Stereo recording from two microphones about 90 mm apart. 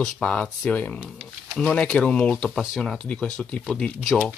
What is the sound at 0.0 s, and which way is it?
Speech, 10° left (ahead or behind).